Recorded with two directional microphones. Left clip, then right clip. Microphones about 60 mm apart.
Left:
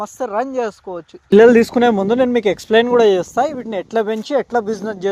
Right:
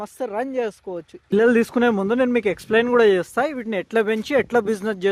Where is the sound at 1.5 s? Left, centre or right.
Left.